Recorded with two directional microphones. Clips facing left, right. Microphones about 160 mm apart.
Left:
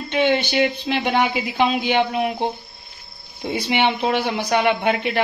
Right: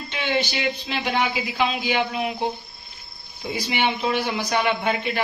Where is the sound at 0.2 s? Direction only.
55° left (ahead or behind).